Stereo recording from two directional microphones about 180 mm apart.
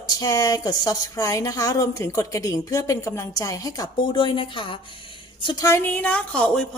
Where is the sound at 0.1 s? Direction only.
20° left (ahead or behind).